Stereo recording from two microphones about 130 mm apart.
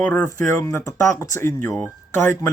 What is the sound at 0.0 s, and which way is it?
Speech, 10° left (ahead or behind).